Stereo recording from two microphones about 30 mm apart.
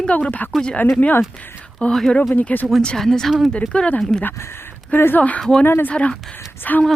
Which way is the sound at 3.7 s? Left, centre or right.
Left.